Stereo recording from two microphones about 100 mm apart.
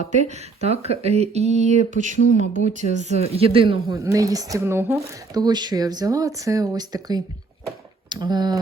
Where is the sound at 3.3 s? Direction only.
65° right (ahead or behind).